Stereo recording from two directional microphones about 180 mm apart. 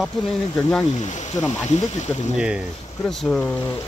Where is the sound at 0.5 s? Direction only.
10° left (ahead or behind).